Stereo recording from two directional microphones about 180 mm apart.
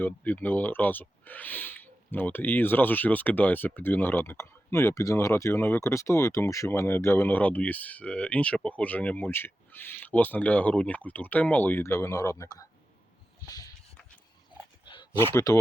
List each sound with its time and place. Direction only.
0.0 s speech: 10° left (ahead or behind)
15.2 s speech: 15° left (ahead or behind)